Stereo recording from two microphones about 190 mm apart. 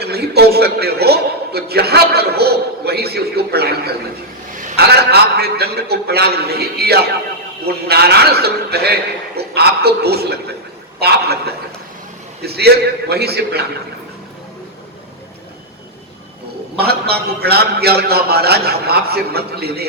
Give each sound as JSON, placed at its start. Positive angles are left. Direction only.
{"t": 0.0, "sound": "a man's voice", "side_deg": -55}
{"t": 16.7, "sound": "a man's voice", "side_deg": -55}